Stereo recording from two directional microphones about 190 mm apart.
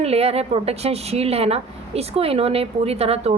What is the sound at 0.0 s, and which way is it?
A woman's voice, 35° right (ahead or behind).